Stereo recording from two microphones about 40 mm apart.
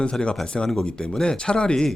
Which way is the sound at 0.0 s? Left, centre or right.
Left.